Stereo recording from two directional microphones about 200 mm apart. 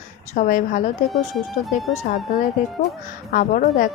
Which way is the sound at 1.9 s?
35° left (ahead or behind).